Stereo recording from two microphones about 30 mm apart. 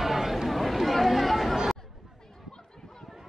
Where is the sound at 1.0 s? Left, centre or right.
Centre.